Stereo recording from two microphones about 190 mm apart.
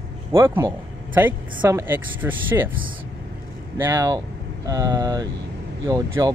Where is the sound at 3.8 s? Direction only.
15° right (ahead or behind).